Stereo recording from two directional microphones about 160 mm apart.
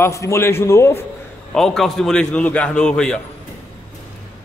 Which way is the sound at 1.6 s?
Centre (ahead or behind).